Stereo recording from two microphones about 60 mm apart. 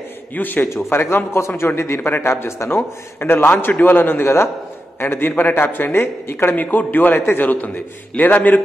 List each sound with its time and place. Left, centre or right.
0.4 s a man's voice: left
2.0 s a man's voice: left